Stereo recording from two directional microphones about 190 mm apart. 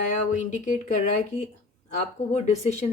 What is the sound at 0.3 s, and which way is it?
Speech, 40° left (ahead or behind).